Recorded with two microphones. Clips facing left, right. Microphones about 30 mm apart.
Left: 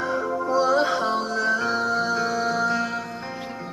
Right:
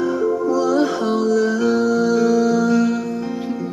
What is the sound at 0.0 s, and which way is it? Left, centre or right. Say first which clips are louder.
Music: right 6 dB; left.